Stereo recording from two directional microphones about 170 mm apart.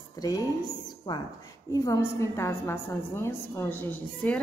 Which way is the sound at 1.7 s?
20° left (ahead or behind).